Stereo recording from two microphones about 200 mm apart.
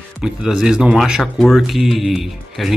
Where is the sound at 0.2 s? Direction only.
Centre (ahead or behind).